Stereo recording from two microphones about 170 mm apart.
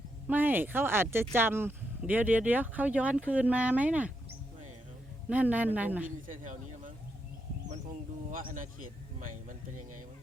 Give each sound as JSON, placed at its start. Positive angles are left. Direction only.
{"t": 0.3, "sound": "speech", "side_deg": -10}
{"t": 5.3, "sound": "speech", "side_deg": -10}
{"t": 6.2, "sound": "speech", "side_deg": -50}
{"t": 8.3, "sound": "speech", "side_deg": -50}